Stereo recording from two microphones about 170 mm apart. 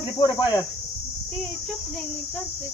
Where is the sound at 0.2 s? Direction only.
25° left (ahead or behind).